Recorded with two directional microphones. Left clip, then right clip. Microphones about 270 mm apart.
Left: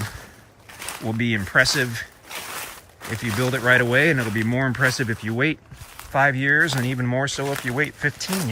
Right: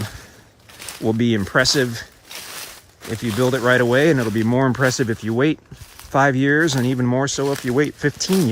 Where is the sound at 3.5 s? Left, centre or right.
Centre.